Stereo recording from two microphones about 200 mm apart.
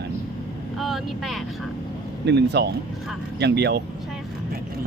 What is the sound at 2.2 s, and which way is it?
Speech, 60° right (ahead or behind).